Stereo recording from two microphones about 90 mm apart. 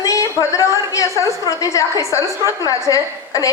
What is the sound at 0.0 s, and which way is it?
A woman's voice, 40° left (ahead or behind).